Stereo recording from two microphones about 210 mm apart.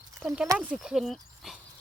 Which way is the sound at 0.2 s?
Centre (ahead or behind).